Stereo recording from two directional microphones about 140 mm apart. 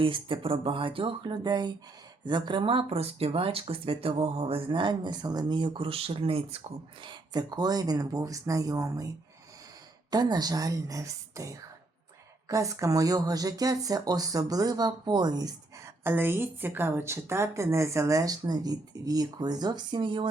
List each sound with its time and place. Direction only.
0.0 s speech: 40° right (ahead or behind)
10.1 s a woman's voice: 30° right (ahead or behind)
16.0 s a woman's voice: 15° right (ahead or behind); by 20.2 s 35° right (ahead or behind)